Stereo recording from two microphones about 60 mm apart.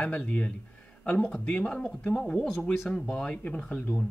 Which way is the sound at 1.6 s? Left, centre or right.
Centre.